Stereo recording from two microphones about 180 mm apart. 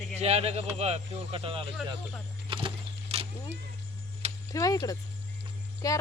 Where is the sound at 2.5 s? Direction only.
30° right (ahead or behind).